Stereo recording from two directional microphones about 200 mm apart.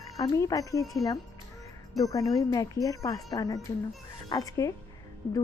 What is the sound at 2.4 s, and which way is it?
Speech, 15° left (ahead or behind).